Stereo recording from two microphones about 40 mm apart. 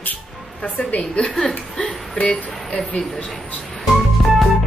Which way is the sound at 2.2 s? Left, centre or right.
Left.